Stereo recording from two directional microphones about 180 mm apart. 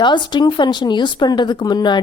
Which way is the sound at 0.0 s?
25° left (ahead or behind).